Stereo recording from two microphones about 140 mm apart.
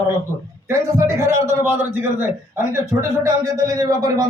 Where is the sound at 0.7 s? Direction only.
20° right (ahead or behind).